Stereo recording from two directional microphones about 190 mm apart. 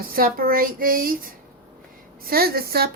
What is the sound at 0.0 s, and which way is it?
A woman's voice, 50° right (ahead or behind).